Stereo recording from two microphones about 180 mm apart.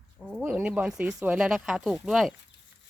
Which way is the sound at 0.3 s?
10° right (ahead or behind).